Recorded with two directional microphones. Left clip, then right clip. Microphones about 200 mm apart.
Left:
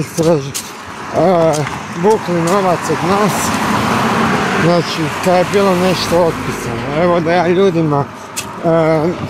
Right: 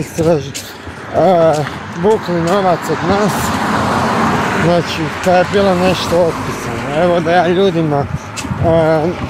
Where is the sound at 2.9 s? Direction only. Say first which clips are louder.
Left 1 dB; 45° left (ahead or behind).